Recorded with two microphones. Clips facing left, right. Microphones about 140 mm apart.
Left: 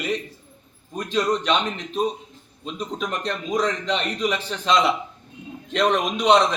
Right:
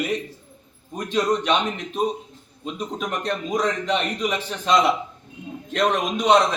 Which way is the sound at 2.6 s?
10° right (ahead or behind).